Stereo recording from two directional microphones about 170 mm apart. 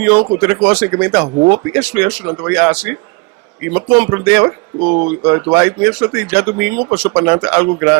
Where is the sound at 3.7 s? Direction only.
25° right (ahead or behind).